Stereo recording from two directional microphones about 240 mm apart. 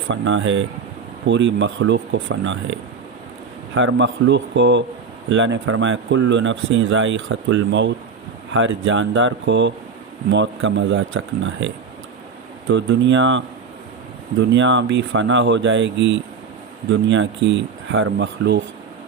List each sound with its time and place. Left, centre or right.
0.1 s speech: right
3.8 s speech: right